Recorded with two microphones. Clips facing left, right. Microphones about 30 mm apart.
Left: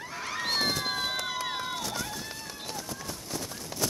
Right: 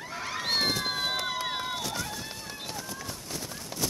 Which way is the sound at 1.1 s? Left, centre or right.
Centre.